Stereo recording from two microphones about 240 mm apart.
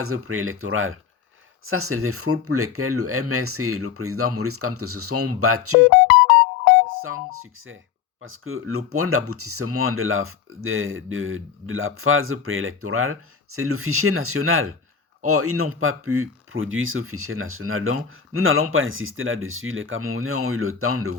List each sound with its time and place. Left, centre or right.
0.0 s speech: right
6.8 s speech: right